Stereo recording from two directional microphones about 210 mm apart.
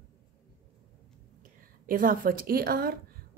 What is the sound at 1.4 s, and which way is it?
A woman's voice, 40° right (ahead or behind).